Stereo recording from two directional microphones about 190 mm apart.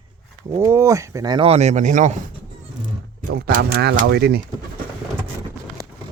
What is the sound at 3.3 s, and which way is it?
Speech, 55° right (ahead or behind).